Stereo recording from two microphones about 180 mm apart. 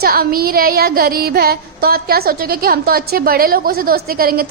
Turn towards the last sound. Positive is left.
turn(degrees=-55)  # may be behind; listen again after turning